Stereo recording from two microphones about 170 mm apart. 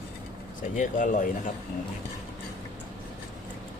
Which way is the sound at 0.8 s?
50° left (ahead or behind).